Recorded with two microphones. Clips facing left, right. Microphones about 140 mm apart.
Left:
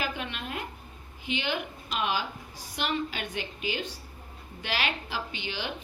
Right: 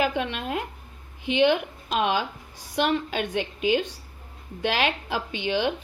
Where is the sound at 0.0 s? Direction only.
90° right.